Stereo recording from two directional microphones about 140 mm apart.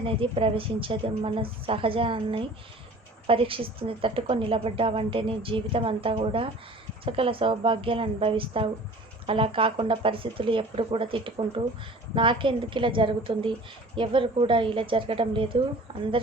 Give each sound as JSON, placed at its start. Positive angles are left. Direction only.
{"t": 0.0, "sound": "a woman's voice", "side_deg": -40}